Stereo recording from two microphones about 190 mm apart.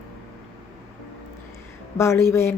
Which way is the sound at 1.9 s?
15° left (ahead or behind).